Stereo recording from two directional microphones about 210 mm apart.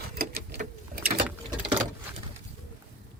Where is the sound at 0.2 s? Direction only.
45° right (ahead or behind).